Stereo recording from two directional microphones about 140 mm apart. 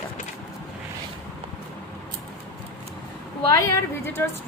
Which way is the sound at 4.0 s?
15° left (ahead or behind).